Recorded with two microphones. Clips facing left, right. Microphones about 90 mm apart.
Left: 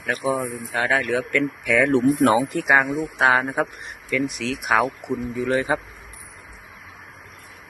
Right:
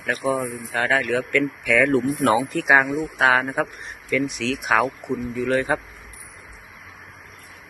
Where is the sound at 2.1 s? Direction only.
40° left (ahead or behind).